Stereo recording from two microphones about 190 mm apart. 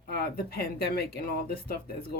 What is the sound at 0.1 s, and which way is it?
Speech, 55° left (ahead or behind).